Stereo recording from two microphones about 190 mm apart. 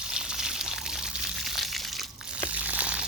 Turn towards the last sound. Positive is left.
turn(degrees=-5)  # may be behind; listen again after turning